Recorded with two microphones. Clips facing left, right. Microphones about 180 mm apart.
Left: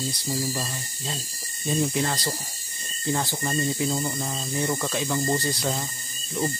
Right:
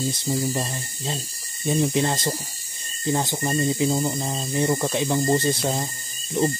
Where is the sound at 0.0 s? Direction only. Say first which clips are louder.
Right 4 dB; 25° right (ahead or behind).